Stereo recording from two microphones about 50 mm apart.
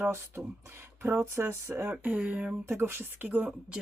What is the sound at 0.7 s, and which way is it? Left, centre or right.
Speech, right.